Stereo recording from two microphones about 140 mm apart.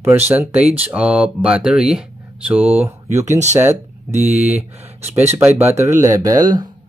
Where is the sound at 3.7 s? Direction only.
55° right (ahead or behind).